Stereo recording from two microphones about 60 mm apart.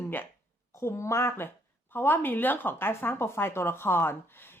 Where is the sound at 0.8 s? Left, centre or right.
Left.